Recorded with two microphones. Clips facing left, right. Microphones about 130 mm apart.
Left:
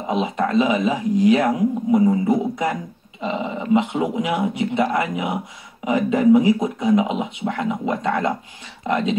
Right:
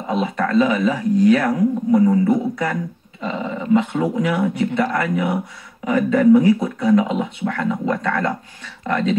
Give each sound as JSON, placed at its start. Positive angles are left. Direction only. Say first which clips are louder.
{"t": 0.1, "sound": "speech", "louder": "right 1 dB", "side_deg": 20}